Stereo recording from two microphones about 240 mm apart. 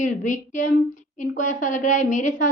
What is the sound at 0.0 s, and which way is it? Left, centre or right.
A woman's voice, left.